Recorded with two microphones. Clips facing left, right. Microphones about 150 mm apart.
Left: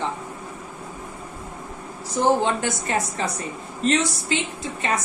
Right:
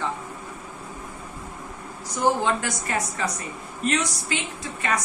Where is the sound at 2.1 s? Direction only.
25° left (ahead or behind).